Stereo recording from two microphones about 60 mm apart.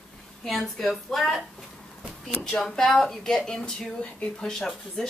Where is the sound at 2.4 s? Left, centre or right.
Centre.